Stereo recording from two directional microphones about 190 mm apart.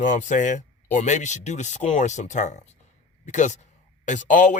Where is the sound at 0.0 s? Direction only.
40° left (ahead or behind).